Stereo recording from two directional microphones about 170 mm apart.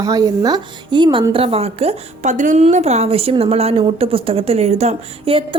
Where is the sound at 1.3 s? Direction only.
35° right (ahead or behind).